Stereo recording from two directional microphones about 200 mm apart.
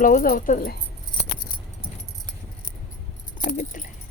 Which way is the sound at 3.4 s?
40° left (ahead or behind).